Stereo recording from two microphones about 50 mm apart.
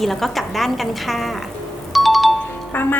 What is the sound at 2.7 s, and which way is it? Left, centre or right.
Music, left.